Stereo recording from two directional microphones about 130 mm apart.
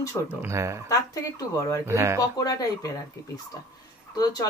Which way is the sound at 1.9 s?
20° right (ahead or behind).